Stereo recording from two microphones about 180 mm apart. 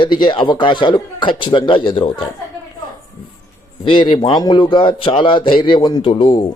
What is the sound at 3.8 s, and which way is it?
Speech, 30° left (ahead or behind).